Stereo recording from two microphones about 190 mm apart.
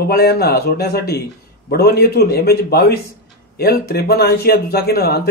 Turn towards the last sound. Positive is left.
turn(degrees=55)  # may be behind; listen again after turning